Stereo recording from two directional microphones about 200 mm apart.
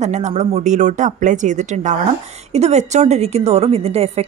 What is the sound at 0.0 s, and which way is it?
A woman's voice, 35° right (ahead or behind).